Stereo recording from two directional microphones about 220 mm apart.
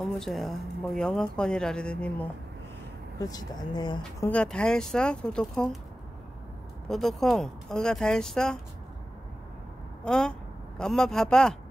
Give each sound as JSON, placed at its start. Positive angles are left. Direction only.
{"t": 0.0, "sound": "speech", "side_deg": 0}
{"t": 3.2, "sound": "speech", "side_deg": 15}
{"t": 4.3, "sound": "speech", "side_deg": 5}
{"t": 6.9, "sound": "speech", "side_deg": 0}
{"t": 10.0, "sound": "speech", "side_deg": 5}